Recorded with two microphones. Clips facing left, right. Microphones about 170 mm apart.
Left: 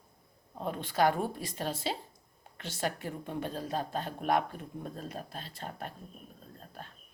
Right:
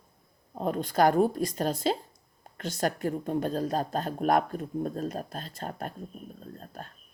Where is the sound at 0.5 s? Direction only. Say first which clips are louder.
Right 5 dB; 45° right (ahead or behind).